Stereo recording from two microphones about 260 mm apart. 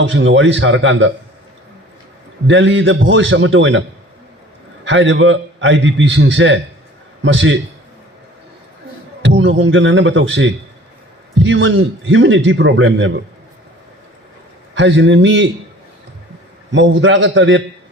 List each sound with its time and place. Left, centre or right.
0.0 s a man's voice: right
2.5 s a man's voice: right
4.9 s a man's voice: right
9.2 s a man's voice: right
14.8 s a man's voice: right
16.7 s a man's voice: right